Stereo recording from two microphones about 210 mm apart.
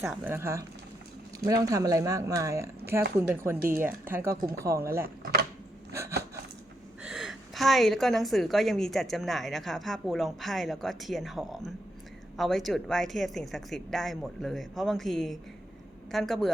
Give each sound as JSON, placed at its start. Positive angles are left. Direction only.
{"t": 0.0, "sound": "speech", "side_deg": -10}
{"t": 1.6, "sound": "speech", "side_deg": -15}
{"t": 5.0, "sound": "speech", "side_deg": -45}
{"t": 5.9, "sound": "a sound", "side_deg": -15}
{"t": 7.0, "sound": "a woman's voice", "side_deg": 0}